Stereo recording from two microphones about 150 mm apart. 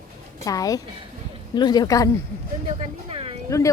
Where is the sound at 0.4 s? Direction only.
25° left (ahead or behind).